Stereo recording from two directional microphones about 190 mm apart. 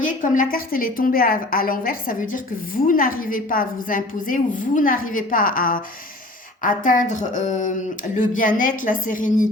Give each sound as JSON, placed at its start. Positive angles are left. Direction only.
{"t": 0.0, "sound": "a woman's voice", "side_deg": 45}